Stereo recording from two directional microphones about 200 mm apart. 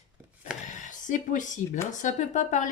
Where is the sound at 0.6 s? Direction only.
40° left (ahead or behind).